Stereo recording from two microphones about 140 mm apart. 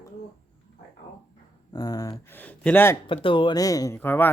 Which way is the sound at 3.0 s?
40° left (ahead or behind).